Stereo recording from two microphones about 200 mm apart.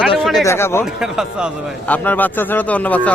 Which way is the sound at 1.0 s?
Centre (ahead or behind).